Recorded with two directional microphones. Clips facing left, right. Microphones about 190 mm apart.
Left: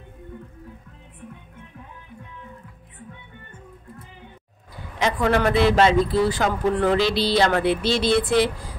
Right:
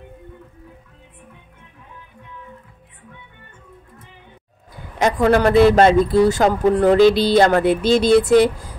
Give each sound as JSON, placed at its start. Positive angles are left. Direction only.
{"t": 4.9, "sound": "a man's voice", "side_deg": -45}